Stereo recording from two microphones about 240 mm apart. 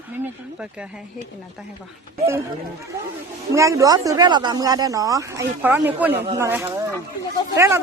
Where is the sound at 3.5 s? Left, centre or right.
Centre.